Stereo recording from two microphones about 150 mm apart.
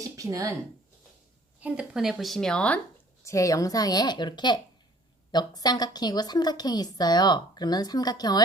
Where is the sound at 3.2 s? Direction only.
20° left (ahead or behind).